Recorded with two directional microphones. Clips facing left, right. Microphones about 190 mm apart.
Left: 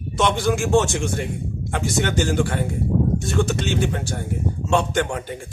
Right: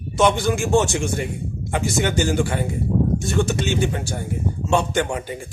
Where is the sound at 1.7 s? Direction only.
5° right (ahead or behind).